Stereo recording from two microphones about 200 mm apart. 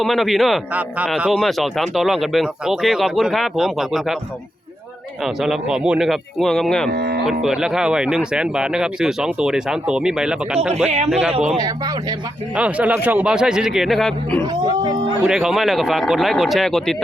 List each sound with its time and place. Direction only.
0.0 s a man's voice: centre (ahead or behind)
5.2 s a man's voice: centre (ahead or behind)
6.9 s music: 55° right (ahead or behind)
7.3 s a man's voice: 5° right (ahead or behind)
10.8 s speech: 35° right (ahead or behind)
12.5 s a man's voice: 5° right (ahead or behind)